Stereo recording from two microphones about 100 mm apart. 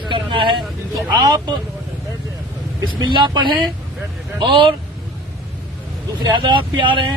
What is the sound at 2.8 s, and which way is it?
A man's voice, 50° right (ahead or behind).